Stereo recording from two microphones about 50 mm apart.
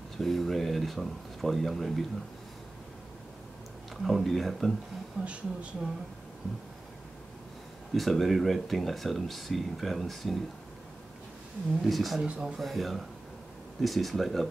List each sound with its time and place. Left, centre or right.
0.2 s speech: centre
4.0 s speech: centre
5.2 s speech: right
7.9 s speech: centre
11.8 s speech: centre
12.2 s speech: centre
12.5 s speech: centre